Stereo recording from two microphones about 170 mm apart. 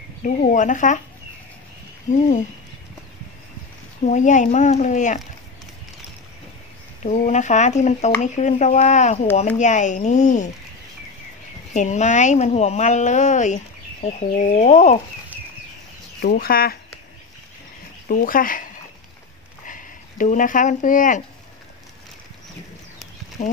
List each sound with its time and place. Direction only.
0.2 s a woman's voice: 45° left (ahead or behind)
2.1 s a woman's voice: 45° left (ahead or behind)
4.0 s a woman's voice: 45° left (ahead or behind)
7.1 s a woman's voice: 45° left (ahead or behind)
11.7 s a woman's voice: 45° left (ahead or behind)
16.2 s speech: 60° left (ahead or behind)
18.0 s speech: 55° left (ahead or behind)